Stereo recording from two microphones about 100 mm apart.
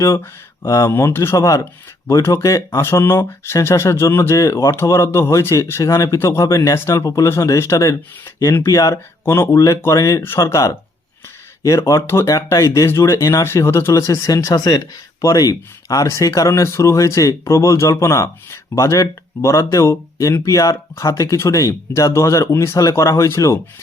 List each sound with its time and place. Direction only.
0.7 s speech: 30° left (ahead or behind)